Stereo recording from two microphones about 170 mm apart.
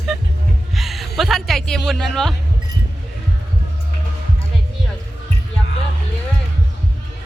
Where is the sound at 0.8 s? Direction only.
Centre (ahead or behind).